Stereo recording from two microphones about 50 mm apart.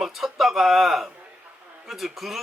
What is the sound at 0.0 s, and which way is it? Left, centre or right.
A man's voice, centre.